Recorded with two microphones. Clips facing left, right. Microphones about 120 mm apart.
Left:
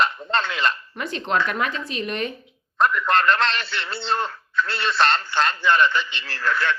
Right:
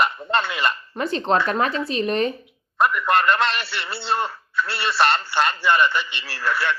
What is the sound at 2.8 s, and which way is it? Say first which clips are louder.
A man's voice: right 1 dB; 10° right (ahead or behind).